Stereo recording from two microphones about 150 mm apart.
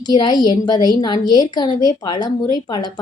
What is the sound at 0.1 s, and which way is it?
A woman's voice, 25° left (ahead or behind).